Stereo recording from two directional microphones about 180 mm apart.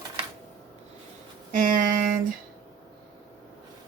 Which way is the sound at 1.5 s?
50° right (ahead or behind).